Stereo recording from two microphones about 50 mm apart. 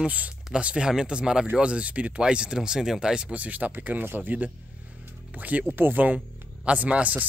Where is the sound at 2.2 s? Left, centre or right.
Centre.